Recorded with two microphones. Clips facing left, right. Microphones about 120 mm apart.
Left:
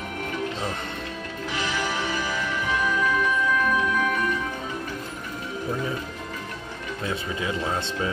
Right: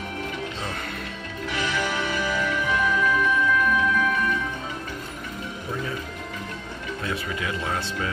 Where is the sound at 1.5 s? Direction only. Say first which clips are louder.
Right 1 dB; 30° left (ahead or behind).